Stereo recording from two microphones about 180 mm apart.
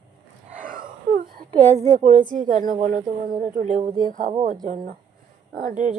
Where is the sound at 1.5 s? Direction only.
20° right (ahead or behind).